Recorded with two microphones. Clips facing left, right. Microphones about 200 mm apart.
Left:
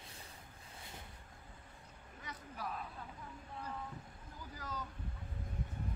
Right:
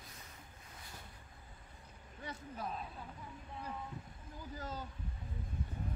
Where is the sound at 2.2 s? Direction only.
25° right (ahead or behind).